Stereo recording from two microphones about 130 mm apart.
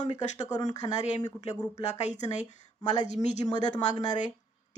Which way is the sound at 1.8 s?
60° left (ahead or behind).